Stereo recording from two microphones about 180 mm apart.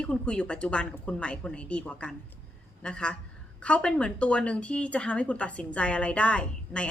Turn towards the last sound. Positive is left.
turn(degrees=5)  # may be behind; listen again after turning